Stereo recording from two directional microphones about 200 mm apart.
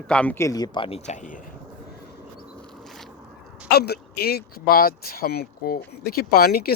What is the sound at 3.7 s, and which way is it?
Speech, 55° left (ahead or behind).